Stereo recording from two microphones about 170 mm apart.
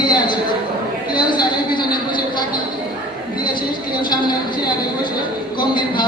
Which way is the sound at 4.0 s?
25° left (ahead or behind).